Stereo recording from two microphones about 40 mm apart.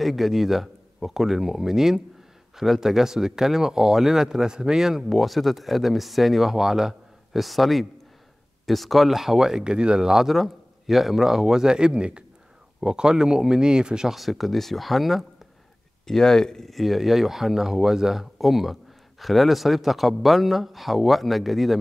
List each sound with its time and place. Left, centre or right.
0.0 s speech: centre
5.0 s speech: centre
7.3 s speech: centre
9.6 s speech: right
14.1 s speech: centre
16.1 s speech: centre
16.7 s speech: centre